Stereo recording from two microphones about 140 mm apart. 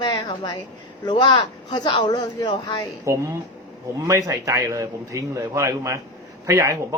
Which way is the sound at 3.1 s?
25° right (ahead or behind).